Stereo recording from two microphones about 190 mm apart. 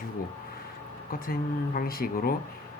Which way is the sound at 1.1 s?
50° left (ahead or behind).